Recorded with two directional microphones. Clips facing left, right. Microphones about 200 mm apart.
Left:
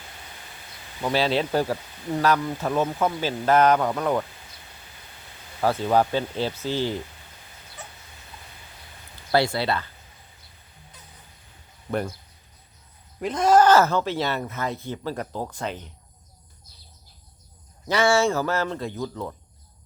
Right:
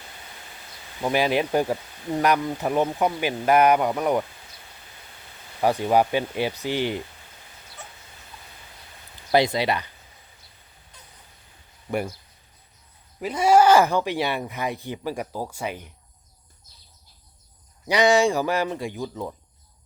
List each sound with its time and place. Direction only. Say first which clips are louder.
1.0 s speech: right 1 dB; 15° right (ahead or behind)
5.5 s speech: right 1 dB; 15° right (ahead or behind)
9.3 s speech: right 2 dB; 15° right (ahead or behind)
13.1 s speech: even; 5° right (ahead or behind)
17.8 s speech: right 2 dB; 15° right (ahead or behind)